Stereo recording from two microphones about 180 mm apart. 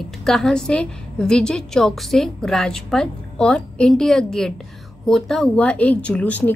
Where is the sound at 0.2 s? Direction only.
Centre (ahead or behind).